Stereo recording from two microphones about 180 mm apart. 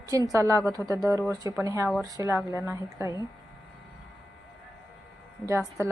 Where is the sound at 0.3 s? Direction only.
15° right (ahead or behind).